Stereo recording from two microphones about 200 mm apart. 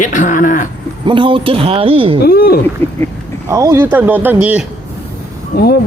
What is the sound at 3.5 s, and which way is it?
Speech, 15° right (ahead or behind).